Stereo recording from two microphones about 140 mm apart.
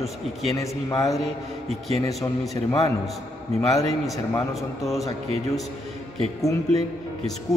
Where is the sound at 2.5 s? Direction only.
25° left (ahead or behind).